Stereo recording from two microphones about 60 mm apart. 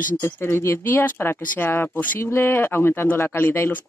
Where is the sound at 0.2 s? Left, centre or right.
Left.